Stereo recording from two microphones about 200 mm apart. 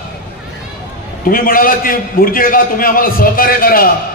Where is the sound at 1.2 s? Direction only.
45° left (ahead or behind).